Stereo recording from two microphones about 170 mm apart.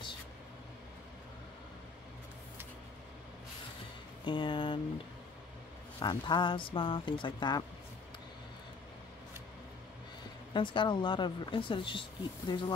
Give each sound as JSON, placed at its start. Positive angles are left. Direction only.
{"t": 4.3, "sound": "speech", "side_deg": 30}
{"t": 5.9, "sound": "speech", "side_deg": 25}
{"t": 10.5, "sound": "speech", "side_deg": 30}